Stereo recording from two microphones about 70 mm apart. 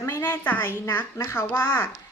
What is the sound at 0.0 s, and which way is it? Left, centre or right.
A child's voice, left.